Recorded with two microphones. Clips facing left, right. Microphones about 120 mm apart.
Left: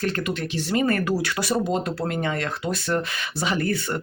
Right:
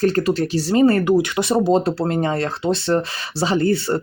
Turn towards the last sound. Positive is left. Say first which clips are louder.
# right 7 dB
turn(degrees=-30)  # may be behind; listen again after turning